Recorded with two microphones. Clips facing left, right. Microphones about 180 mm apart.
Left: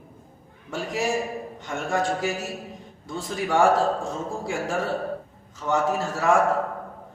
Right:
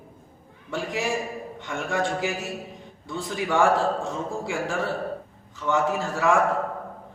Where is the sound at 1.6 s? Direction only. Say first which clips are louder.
Left 1 dB; 40° left (ahead or behind).